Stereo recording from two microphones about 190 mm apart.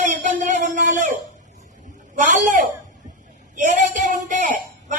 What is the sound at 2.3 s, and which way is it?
A man's voice, 45° right (ahead or behind).